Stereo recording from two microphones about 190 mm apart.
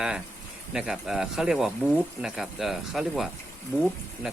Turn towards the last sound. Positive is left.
turn(degrees=10)  # may be behind; listen again after turning